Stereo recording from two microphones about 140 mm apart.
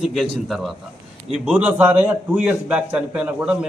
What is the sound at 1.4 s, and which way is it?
A man's voice, 10° right (ahead or behind).